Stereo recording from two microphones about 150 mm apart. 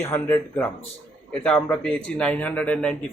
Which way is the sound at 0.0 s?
15° left (ahead or behind).